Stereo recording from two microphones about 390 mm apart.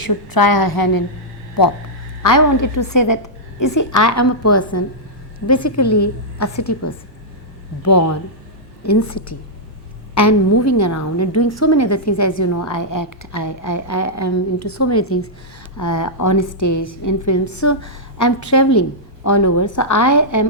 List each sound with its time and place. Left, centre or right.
0.0 s a woman's voice: left
2.2 s a woman's voice: left
8.8 s a woman's voice: left
15.8 s a woman's voice: left